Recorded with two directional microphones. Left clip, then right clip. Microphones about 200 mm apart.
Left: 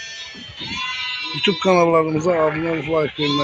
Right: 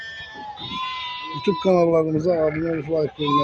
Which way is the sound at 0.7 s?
65° right (ahead or behind).